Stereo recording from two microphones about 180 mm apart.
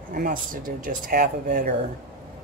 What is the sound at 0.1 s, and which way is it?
Speech, 50° right (ahead or behind).